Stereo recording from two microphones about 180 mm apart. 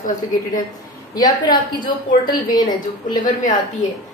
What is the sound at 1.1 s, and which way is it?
Speech, 25° left (ahead or behind).